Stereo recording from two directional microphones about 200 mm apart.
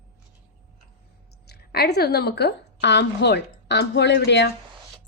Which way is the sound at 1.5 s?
55° left (ahead or behind).